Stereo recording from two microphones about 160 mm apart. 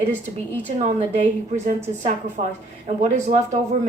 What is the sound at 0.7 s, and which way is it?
Speech, 45° right (ahead or behind).